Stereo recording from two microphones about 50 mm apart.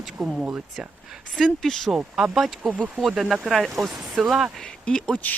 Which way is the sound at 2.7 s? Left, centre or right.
Right.